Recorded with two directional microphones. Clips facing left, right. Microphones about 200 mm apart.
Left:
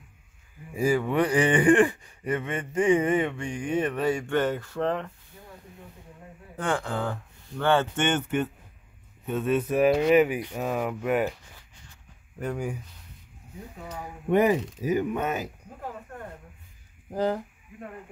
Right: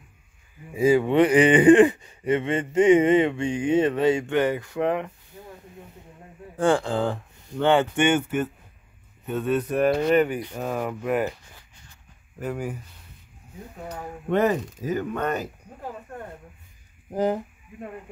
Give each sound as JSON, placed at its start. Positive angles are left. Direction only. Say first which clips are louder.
{"t": 0.8, "sound": "speech", "louder": "right 6 dB", "side_deg": -25}
{"t": 6.6, "sound": "speech", "louder": "right 7 dB", "side_deg": -30}
{"t": 12.4, "sound": "speech", "louder": "right 1 dB", "side_deg": -5}
{"t": 14.3, "sound": "speech", "louder": "even", "side_deg": 10}
{"t": 17.1, "sound": "speech", "louder": "right 3 dB", "side_deg": -20}